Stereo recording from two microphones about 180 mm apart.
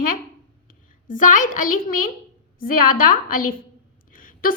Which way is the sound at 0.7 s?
45° left (ahead or behind).